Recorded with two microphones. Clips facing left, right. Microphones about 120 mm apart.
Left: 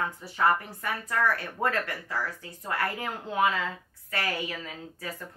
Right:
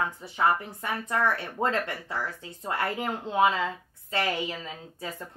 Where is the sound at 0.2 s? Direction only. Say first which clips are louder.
Left 1 dB; 20° right (ahead or behind).